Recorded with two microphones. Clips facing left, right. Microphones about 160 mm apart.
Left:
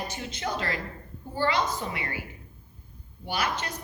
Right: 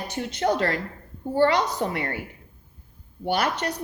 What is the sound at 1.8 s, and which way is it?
Speech, 50° right (ahead or behind).